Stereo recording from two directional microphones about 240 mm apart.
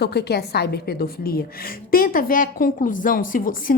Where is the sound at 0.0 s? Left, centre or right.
Left.